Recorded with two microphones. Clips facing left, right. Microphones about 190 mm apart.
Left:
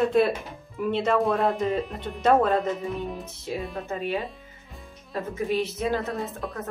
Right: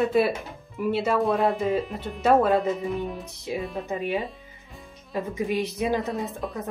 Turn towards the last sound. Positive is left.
turn(degrees=0)  # may be behind; listen again after turning